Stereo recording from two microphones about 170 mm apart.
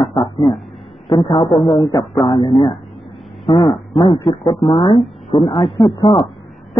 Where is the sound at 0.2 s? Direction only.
Centre (ahead or behind).